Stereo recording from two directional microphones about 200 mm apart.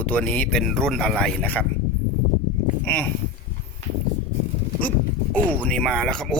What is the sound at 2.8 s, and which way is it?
Speech, 10° left (ahead or behind).